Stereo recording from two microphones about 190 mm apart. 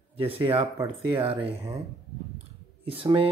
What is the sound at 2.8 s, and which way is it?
Speech, 30° right (ahead or behind).